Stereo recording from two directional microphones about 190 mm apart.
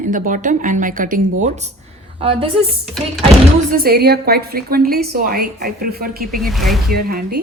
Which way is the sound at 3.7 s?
50° right (ahead or behind).